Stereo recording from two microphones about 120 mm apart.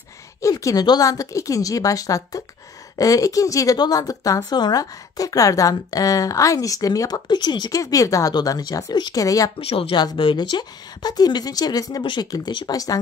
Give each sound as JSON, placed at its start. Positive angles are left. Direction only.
{"t": 0.4, "sound": "a woman's voice", "side_deg": 25}
{"t": 9.6, "sound": "speech", "side_deg": 50}
{"t": 9.9, "sound": "speech", "side_deg": 40}